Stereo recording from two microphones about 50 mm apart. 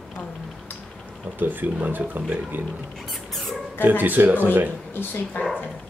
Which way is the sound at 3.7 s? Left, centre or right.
Right.